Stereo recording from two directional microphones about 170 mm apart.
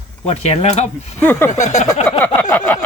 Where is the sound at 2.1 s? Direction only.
10° left (ahead or behind).